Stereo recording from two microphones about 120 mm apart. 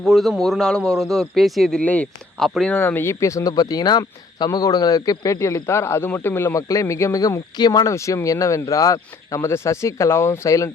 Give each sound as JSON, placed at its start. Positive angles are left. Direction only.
{"t": 0.0, "sound": "speech", "side_deg": 0}
{"t": 2.7, "sound": "speech", "side_deg": 20}